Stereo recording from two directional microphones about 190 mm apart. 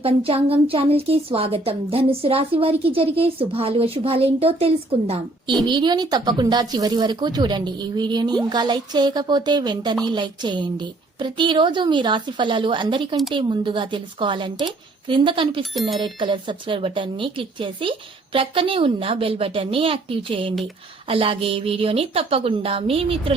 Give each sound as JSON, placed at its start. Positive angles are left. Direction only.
{"t": 0.0, "sound": "a woman's voice", "side_deg": -30}
{"t": 15.7, "sound": "speech", "side_deg": 0}
{"t": 16.0, "sound": "a woman's voice", "side_deg": -25}